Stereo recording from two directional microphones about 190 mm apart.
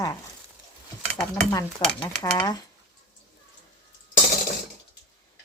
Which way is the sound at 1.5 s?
20° left (ahead or behind).